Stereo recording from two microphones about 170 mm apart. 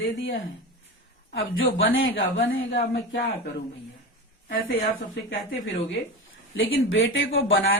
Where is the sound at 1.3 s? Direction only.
90° left.